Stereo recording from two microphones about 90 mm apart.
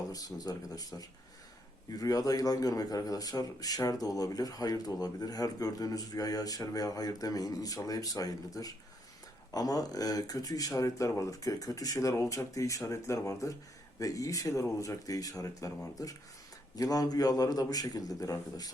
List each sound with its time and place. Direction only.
0.1 s a man's voice: 45° left (ahead or behind)